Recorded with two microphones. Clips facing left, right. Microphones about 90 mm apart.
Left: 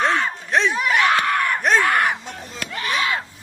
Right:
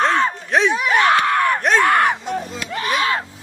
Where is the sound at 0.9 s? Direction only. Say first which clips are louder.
Right 4 dB; 35° right (ahead or behind).